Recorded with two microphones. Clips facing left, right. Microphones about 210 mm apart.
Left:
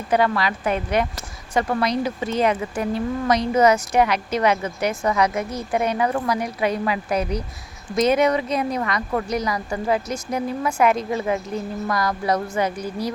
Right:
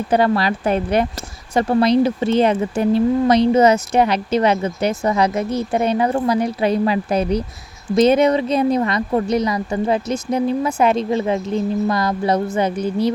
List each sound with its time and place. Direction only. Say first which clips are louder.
0.1 s speech: right 3 dB; 30° right (ahead or behind)